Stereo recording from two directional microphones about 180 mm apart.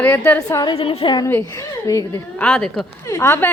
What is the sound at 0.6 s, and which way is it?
Speech, 25° left (ahead or behind).